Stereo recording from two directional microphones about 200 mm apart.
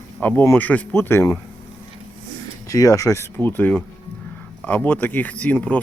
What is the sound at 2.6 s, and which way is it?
Speech, 15° left (ahead or behind).